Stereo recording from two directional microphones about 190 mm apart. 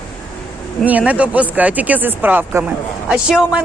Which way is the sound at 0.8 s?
5° right (ahead or behind).